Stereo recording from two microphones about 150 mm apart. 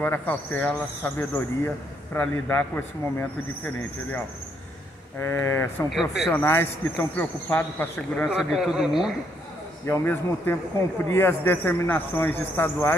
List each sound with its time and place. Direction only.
0.0 s speech: 10° left (ahead or behind)
5.2 s speech: 15° left (ahead or behind)
5.9 s a man's voice: centre (ahead or behind)
6.3 s speech: 15° left (ahead or behind)
8.4 s a man's voice: centre (ahead or behind)
9.8 s speech: 15° left (ahead or behind)